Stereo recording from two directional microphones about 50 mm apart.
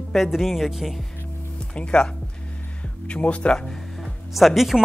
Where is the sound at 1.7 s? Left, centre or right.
Left.